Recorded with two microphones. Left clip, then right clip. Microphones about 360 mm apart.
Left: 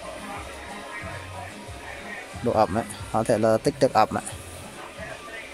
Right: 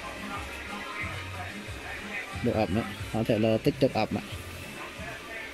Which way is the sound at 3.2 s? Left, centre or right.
Left.